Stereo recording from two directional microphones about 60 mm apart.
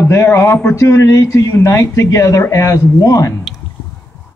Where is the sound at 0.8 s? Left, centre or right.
Left.